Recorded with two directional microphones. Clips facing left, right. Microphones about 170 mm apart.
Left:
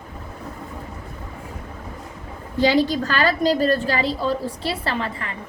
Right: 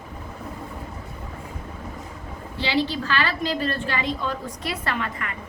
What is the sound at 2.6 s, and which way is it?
A woman's voice, 45° left (ahead or behind).